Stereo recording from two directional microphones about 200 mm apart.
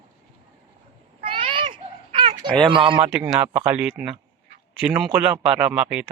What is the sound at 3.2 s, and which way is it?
Speech, 10° right (ahead or behind).